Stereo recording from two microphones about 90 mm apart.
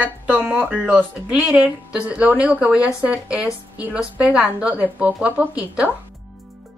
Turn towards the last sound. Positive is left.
turn(degrees=-15)  # may be behind; listen again after turning